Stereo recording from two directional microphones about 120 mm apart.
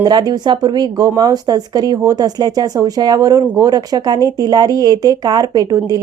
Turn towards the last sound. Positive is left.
turn(degrees=-30)  # may be behind; listen again after turning